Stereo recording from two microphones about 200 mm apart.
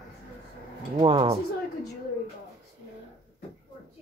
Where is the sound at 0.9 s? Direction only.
30° right (ahead or behind).